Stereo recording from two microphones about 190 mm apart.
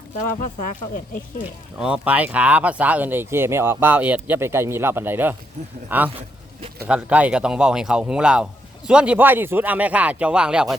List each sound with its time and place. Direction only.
0.3 s speech: 40° left (ahead or behind)
1.8 s speech: 5° right (ahead or behind)